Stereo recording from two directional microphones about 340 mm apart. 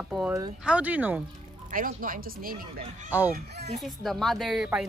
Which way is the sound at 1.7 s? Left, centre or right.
Right.